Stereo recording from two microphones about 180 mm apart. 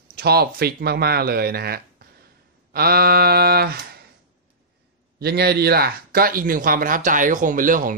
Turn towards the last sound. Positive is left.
turn(degrees=-50)  # may be behind; listen again after turning